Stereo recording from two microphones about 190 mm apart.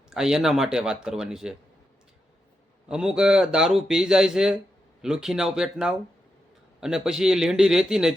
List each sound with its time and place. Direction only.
0.1 s speech: 5° right (ahead or behind)
2.9 s speech: 5° right (ahead or behind)